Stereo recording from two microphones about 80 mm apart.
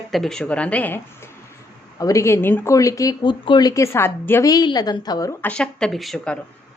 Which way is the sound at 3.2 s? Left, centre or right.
Left.